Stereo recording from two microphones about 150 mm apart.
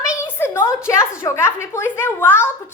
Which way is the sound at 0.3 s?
15° left (ahead or behind).